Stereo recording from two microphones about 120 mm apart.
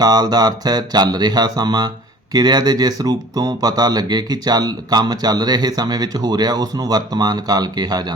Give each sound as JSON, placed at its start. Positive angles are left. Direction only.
{"t": 0.0, "sound": "speech", "side_deg": -35}